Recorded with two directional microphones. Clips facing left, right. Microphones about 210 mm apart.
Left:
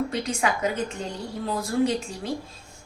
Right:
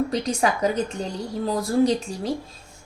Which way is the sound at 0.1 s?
35° right (ahead or behind).